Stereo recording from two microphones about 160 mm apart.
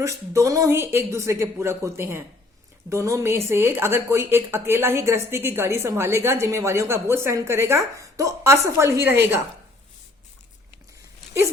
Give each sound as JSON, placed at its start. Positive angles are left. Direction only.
{"t": 0.0, "sound": "speech", "side_deg": -20}